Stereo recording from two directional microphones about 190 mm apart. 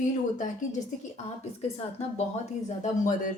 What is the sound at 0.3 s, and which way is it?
A woman's voice, 40° left (ahead or behind).